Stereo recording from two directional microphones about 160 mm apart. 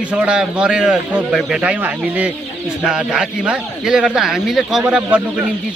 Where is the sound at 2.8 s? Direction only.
5° right (ahead or behind).